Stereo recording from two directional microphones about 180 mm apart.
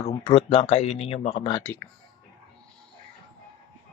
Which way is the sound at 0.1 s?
25° left (ahead or behind).